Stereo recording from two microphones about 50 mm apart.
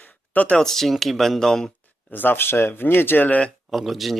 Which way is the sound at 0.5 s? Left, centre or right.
Centre.